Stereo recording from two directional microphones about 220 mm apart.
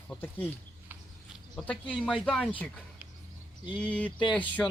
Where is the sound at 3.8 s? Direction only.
5° left (ahead or behind).